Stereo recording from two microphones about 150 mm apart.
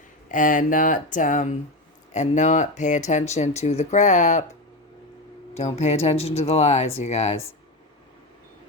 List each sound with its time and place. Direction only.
0.3 s speech: 65° left (ahead or behind)
5.5 s speech: 45° left (ahead or behind)